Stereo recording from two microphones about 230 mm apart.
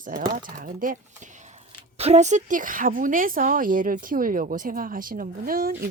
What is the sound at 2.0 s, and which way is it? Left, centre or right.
A woman's voice, right.